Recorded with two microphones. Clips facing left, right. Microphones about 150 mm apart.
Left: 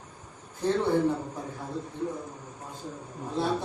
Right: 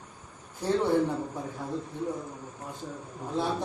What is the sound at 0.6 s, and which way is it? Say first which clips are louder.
Speech: left 1 dB; 10° right (ahead or behind).